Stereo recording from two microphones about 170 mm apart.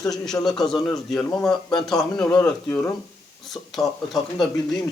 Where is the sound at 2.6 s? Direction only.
15° left (ahead or behind).